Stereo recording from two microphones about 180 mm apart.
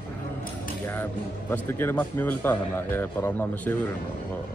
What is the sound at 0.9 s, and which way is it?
Speech, 10° left (ahead or behind).